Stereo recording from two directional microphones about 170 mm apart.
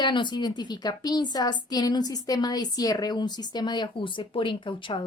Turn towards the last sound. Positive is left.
turn(degrees=30)  # may be behind; listen again after turning